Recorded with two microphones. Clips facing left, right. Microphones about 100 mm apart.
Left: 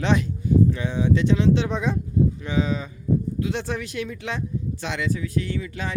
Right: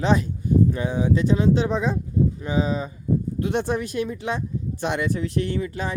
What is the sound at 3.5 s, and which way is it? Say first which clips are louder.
Speech: right 4 dB; 50° right (ahead or behind).